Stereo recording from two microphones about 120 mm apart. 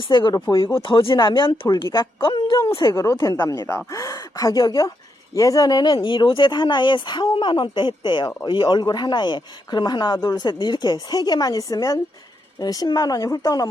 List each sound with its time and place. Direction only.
0.0 s speech: 45° left (ahead or behind)
2.9 s speech: 25° left (ahead or behind)
6.0 s speech: 45° left (ahead or behind)